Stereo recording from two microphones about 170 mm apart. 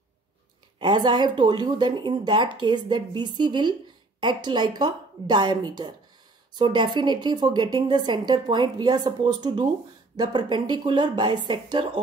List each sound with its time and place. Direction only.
0.7 s a woman's voice: 25° right (ahead or behind)